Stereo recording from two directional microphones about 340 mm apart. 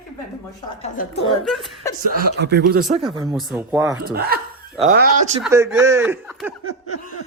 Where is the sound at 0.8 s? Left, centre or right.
Left.